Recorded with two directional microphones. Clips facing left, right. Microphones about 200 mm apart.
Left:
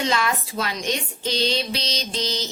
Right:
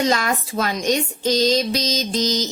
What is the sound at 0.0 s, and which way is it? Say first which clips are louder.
A child's voice: right 3 dB; 40° right (ahead or behind).